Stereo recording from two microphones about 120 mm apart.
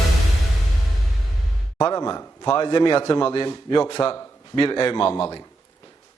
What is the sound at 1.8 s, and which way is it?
A man's voice, 35° left (ahead or behind).